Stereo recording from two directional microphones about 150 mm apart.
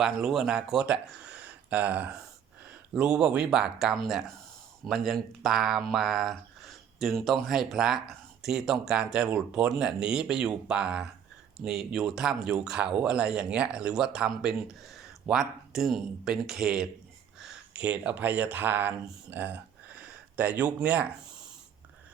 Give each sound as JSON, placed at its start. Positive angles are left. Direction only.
{"t": 0.0, "sound": "speech", "side_deg": 0}